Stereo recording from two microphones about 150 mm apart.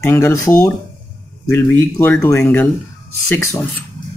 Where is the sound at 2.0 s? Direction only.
15° left (ahead or behind).